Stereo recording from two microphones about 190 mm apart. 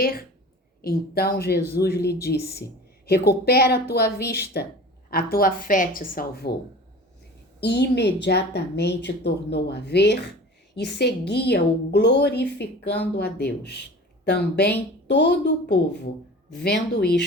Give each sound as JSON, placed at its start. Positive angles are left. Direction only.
{"t": 0.0, "sound": "a woman's voice", "side_deg": 50}
{"t": 7.6, "sound": "a woman's voice", "side_deg": 60}